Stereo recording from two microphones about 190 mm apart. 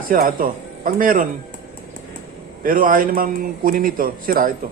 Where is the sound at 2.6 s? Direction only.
45° right (ahead or behind).